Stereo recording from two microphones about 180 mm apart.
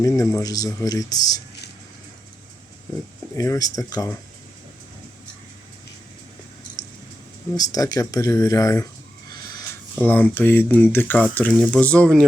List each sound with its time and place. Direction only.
0.2 s speech: 15° left (ahead or behind)
3.3 s speech: 20° left (ahead or behind)
7.5 s speech: 20° left (ahead or behind)